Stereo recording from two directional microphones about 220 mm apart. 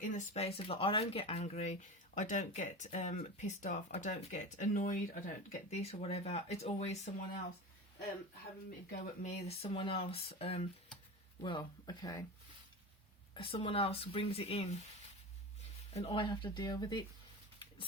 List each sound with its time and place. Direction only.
0.0 s speech: 30° left (ahead or behind)
8.9 s speech: 30° left (ahead or behind)
13.3 s speech: 25° left (ahead or behind)
15.9 s speech: 25° left (ahead or behind)